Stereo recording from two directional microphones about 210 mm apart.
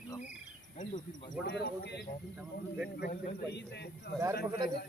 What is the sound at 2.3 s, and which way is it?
Speech, 5° right (ahead or behind).